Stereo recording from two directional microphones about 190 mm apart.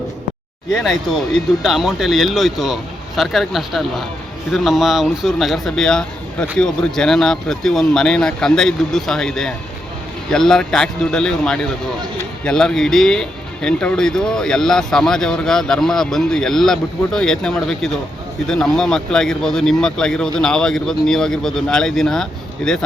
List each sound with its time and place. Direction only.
0.7 s speech: centre (ahead or behind)